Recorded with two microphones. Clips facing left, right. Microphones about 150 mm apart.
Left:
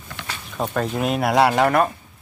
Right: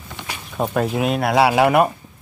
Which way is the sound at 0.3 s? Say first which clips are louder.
Right 3 dB; 15° right (ahead or behind).